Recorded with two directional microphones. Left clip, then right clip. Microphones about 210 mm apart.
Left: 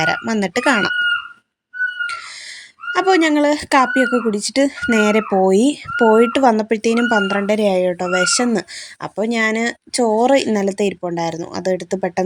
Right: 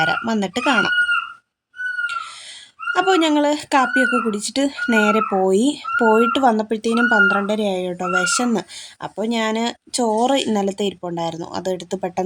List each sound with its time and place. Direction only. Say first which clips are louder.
0.0 s speech: left 1 dB; 15° left (ahead or behind)
2.9 s speech: left 2 dB; 15° left (ahead or behind)